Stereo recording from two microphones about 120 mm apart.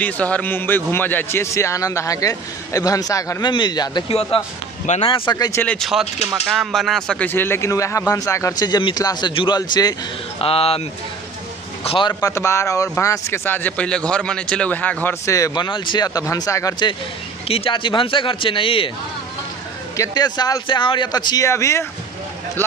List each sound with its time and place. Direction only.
0.0 s a man's voice: 10° left (ahead or behind); by 4.0 s 35° left (ahead or behind)
4.1 s speech: 55° left (ahead or behind)
5.0 s speech: 45° left (ahead or behind)
5.8 s speech: 5° right (ahead or behind)
7.2 s a man's voice: 20° left (ahead or behind)
10.4 s speech: 50° left (ahead or behind)
11.8 s a man's voice: 50° left (ahead or behind)
12.1 s a man's voice: 25° left (ahead or behind)
15.2 s speech: 30° left (ahead or behind)
17.5 s speech: 50° left (ahead or behind)
20.0 s speech: 35° left (ahead or behind)
21.5 s a man's voice: 25° left (ahead or behind)